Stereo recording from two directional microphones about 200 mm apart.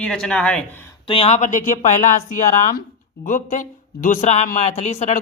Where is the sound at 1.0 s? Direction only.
25° left (ahead or behind).